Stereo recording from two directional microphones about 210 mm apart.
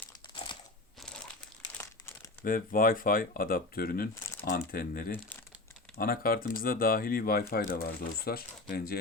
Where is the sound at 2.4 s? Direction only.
40° left (ahead or behind).